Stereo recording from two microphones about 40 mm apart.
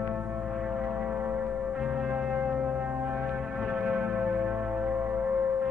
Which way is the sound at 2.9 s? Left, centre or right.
Right.